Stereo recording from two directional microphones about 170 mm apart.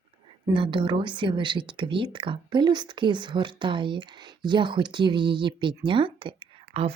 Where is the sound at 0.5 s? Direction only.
30° right (ahead or behind).